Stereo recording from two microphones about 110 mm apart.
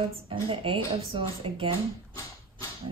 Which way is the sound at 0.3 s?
55° right (ahead or behind).